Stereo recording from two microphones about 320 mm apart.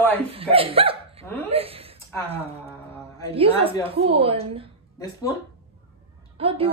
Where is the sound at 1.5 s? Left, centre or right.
Centre.